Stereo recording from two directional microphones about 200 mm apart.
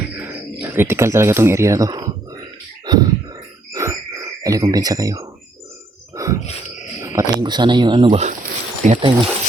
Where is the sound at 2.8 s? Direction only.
20° right (ahead or behind).